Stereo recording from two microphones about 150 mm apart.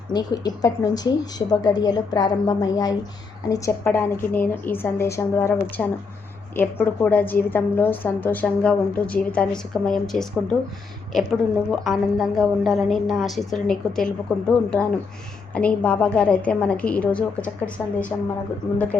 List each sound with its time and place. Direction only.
0.1 s a woman's voice: 25° left (ahead or behind); by 17.5 s 10° left (ahead or behind)